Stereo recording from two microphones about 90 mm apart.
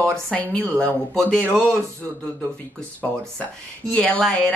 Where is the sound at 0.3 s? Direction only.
10° left (ahead or behind).